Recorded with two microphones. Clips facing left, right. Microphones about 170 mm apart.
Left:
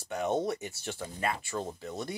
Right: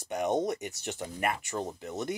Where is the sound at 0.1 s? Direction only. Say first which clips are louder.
Right 1 dB; 15° right (ahead or behind).